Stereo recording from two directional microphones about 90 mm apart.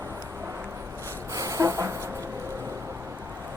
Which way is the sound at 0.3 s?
25° right (ahead or behind).